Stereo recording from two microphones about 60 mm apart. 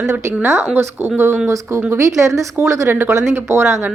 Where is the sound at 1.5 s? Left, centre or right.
Right.